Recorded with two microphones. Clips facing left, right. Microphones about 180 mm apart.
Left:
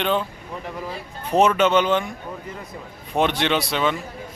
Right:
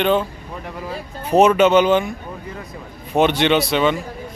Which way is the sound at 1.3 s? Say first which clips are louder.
Right 5 dB; 10° right (ahead or behind).